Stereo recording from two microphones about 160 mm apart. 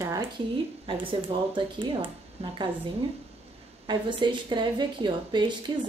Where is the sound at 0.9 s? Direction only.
35° right (ahead or behind).